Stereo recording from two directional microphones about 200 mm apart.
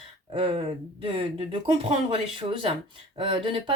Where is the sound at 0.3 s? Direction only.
25° right (ahead or behind).